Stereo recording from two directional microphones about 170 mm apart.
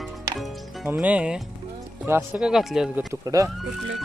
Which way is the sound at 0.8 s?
10° right (ahead or behind).